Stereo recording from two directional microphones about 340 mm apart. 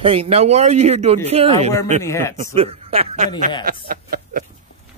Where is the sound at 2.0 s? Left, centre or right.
Centre.